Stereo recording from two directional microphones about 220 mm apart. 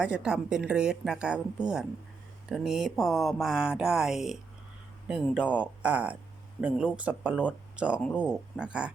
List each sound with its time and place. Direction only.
0.0 s a woman's voice: 5° right (ahead or behind)